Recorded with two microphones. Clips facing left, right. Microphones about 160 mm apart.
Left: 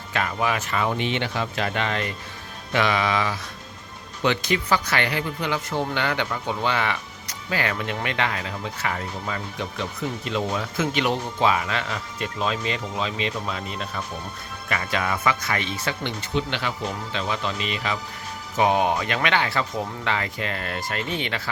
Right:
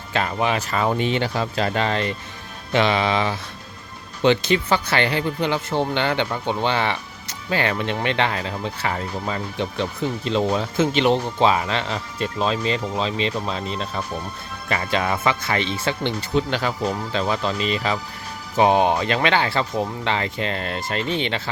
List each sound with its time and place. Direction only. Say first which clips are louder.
0.1 s speech: right 3 dB; 30° right (ahead or behind)
16.3 s speech: right 4 dB; 40° right (ahead or behind)